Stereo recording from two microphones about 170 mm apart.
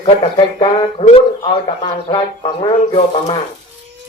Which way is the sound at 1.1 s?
30° left (ahead or behind).